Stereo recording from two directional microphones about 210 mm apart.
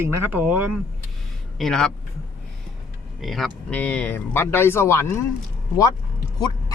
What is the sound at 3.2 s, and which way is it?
Speech, centre (ahead or behind).